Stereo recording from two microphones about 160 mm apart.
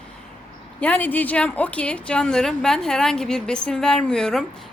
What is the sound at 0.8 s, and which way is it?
A woman's voice, 10° left (ahead or behind).